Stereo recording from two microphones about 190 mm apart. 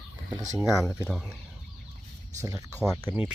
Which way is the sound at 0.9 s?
5° right (ahead or behind).